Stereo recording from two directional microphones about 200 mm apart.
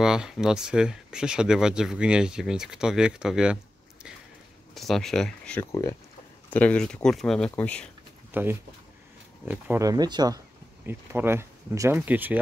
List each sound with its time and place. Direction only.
0.0 s speech: 5° right (ahead or behind)
4.7 s speech: centre (ahead or behind)
8.3 s speech: 10° right (ahead or behind)